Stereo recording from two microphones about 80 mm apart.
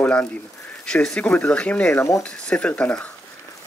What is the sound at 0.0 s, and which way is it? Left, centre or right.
Speech, centre.